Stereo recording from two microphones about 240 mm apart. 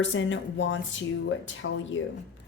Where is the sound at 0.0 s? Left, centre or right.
Left.